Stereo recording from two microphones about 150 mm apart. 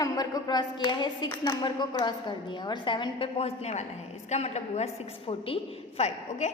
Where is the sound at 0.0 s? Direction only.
25° left (ahead or behind); by 4.9 s 45° left (ahead or behind).